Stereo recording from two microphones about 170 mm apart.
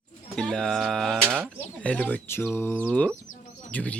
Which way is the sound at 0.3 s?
5° left (ahead or behind).